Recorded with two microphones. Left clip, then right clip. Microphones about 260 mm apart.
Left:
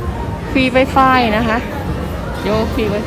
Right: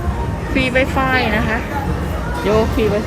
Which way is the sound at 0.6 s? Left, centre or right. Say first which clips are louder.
Left 4 dB; centre.